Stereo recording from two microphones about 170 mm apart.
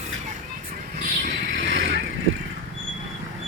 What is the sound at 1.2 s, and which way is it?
Vehicle, 90° right.